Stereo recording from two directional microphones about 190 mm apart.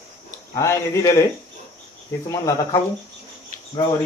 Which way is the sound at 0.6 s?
15° left (ahead or behind).